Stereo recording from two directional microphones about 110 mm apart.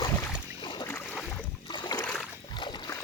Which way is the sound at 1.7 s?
45° left (ahead or behind).